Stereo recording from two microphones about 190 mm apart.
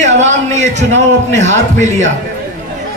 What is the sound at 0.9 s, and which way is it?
A man's voice, 40° right (ahead or behind).